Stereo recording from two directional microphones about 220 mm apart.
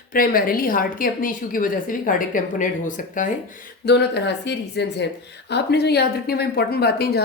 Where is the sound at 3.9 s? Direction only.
50° left (ahead or behind).